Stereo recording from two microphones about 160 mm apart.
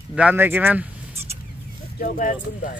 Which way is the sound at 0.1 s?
10° right (ahead or behind).